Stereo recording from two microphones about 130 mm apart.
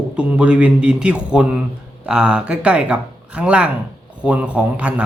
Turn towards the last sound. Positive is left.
turn(degrees=-10)  # may be behind; listen again after turning